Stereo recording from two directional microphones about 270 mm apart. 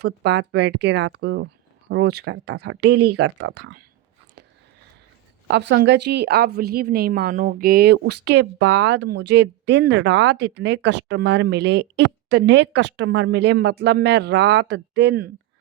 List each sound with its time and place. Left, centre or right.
0.0 s speech: right
5.5 s speech: right